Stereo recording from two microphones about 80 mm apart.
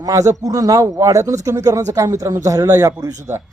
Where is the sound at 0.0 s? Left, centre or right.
Right.